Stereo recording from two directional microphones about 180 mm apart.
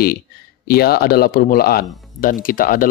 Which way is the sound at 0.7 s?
60° left (ahead or behind).